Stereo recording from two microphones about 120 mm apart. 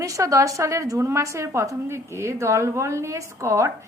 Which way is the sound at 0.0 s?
25° right (ahead or behind).